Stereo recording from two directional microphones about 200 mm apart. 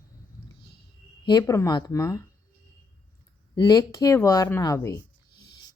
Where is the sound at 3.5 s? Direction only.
20° left (ahead or behind).